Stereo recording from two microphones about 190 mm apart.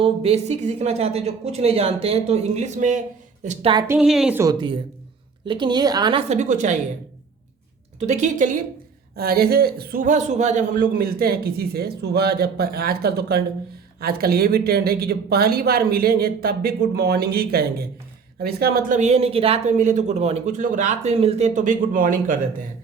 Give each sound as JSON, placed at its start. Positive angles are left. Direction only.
{"t": 0.0, "sound": "speech", "side_deg": -30}
{"t": 3.8, "sound": "a woman's voice", "side_deg": -5}
{"t": 4.4, "sound": "a woman's voice", "side_deg": -25}
{"t": 7.9, "sound": "speech", "side_deg": -40}
{"t": 9.1, "sound": "speech", "side_deg": -55}